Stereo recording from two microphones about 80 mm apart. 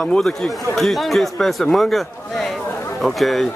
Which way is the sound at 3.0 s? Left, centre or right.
Centre.